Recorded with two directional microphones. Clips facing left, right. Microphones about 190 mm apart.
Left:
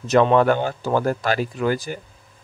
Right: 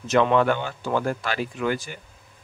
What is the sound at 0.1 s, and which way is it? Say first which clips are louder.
Speech: left 4 dB; 40° left (ahead or behind).